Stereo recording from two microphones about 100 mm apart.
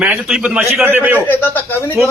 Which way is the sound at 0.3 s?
10° right (ahead or behind).